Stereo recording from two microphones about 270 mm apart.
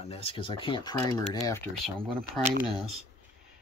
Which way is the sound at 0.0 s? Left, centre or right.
Left.